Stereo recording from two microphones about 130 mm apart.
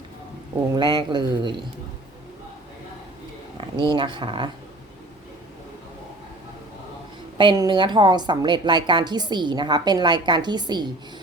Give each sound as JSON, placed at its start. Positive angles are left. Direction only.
{"t": 0.8, "sound": "a woman's voice", "side_deg": -35}
{"t": 3.8, "sound": "a woman's voice", "side_deg": -35}
{"t": 7.3, "sound": "a woman's voice", "side_deg": -35}